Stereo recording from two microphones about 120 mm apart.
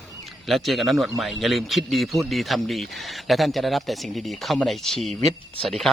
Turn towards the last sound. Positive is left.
turn(degrees=0)  # may be behind; listen again after turning